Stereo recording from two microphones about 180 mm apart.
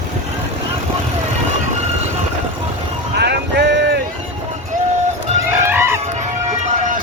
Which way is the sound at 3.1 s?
70° right (ahead or behind).